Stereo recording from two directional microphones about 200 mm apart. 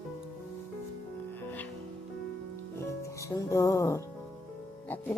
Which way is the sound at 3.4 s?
15° left (ahead or behind).